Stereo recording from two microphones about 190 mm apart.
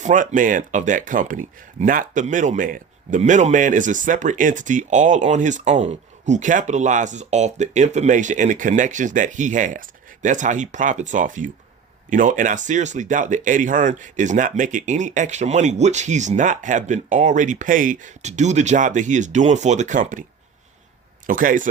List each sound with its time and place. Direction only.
0.0 s speech: 40° right (ahead or behind)
21.2 s speech: 45° right (ahead or behind)